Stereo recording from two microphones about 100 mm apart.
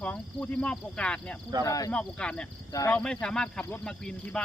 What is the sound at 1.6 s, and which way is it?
Speech, 35° left (ahead or behind).